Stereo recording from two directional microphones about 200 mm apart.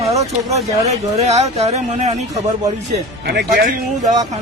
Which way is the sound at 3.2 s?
50° right (ahead or behind).